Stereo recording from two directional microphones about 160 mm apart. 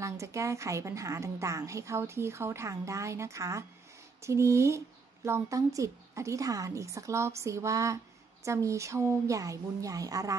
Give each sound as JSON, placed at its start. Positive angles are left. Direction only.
{"t": 0.0, "sound": "speech", "side_deg": -20}